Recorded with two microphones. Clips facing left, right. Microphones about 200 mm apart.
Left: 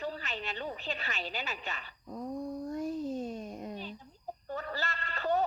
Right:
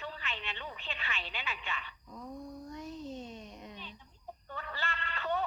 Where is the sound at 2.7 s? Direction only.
50° left (ahead or behind).